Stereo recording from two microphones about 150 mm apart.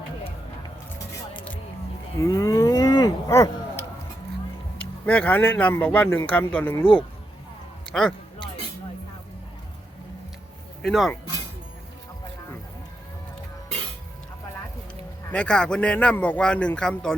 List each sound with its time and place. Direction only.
2.1 s cattle: 25° left (ahead or behind)
5.0 s speech: 10° left (ahead or behind)
10.8 s speech: centre (ahead or behind)
15.3 s speech: 5° left (ahead or behind)